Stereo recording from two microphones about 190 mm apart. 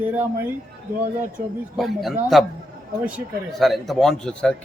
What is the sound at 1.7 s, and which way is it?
Speech, centre (ahead or behind).